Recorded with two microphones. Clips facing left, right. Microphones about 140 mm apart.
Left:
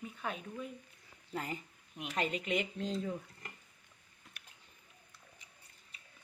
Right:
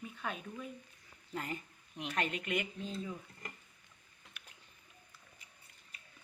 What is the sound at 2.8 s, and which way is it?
Speech, 90° left.